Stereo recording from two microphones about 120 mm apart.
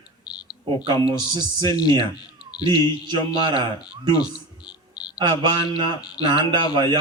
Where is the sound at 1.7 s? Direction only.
35° left (ahead or behind).